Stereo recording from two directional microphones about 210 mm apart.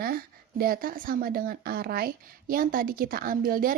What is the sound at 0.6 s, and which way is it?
Speech, 45° right (ahead or behind).